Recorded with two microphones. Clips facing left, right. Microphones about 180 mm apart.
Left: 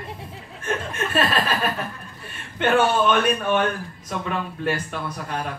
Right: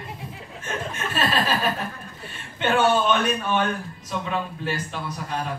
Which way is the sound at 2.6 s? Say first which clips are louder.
Left 1 dB; 55° left (ahead or behind).